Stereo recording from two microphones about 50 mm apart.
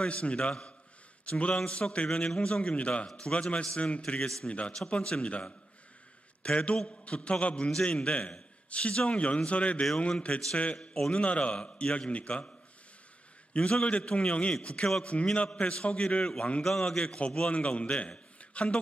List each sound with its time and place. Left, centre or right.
0.0 s a man's voice: left